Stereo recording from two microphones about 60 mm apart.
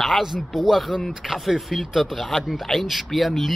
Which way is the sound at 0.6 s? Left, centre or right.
Centre.